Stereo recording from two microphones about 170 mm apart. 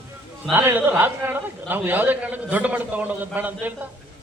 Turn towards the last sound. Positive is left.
turn(degrees=-10)  # may be behind; listen again after turning